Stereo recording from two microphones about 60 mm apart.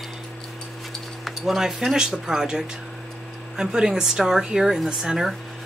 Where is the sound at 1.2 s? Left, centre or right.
Centre.